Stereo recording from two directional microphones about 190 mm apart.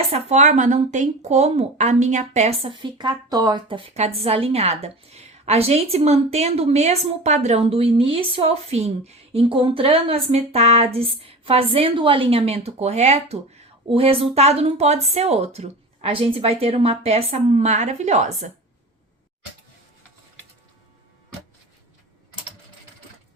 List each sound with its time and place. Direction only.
0.1 s speech: 35° right (ahead or behind)